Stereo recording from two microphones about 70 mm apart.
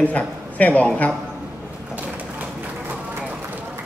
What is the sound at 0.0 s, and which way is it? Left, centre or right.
A man's voice, left.